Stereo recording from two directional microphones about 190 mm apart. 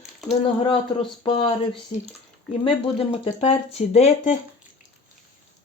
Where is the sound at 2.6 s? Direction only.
30° left (ahead or behind).